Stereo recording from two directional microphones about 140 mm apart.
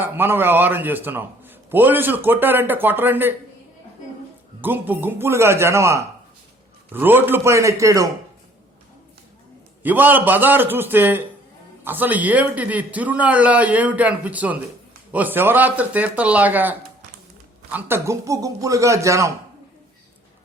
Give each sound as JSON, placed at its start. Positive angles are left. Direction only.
{"t": 0.0, "sound": "a man's voice", "side_deg": -15}
{"t": 4.6, "sound": "speech", "side_deg": -15}
{"t": 9.8, "sound": "a man's voice", "side_deg": -15}